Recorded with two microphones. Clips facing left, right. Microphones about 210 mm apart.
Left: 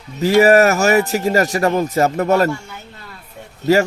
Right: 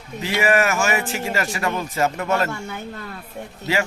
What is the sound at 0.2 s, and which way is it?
A man's voice, 40° left (ahead or behind).